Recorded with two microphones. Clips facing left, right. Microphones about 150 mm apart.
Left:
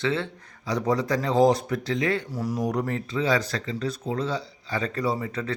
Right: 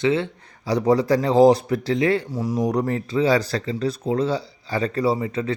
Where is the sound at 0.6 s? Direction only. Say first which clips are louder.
Right 6 dB; 35° right (ahead or behind).